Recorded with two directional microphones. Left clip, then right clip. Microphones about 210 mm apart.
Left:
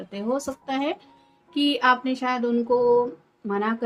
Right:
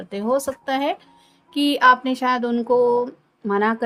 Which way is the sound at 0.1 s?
55° right (ahead or behind).